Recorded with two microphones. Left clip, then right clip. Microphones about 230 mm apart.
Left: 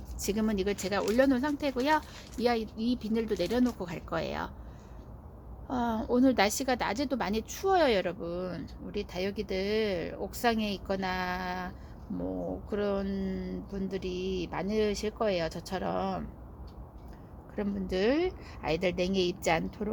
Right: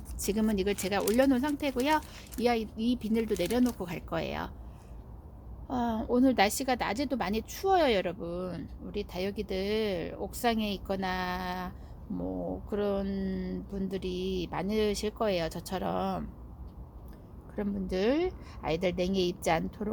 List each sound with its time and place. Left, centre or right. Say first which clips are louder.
0.2 s a woman's voice: right 1 dB; centre
5.6 s a woman's voice: even; centre
17.5 s a woman's voice: left 1 dB; centre